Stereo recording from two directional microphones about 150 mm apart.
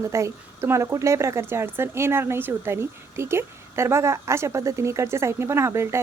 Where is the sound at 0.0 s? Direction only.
20° right (ahead or behind).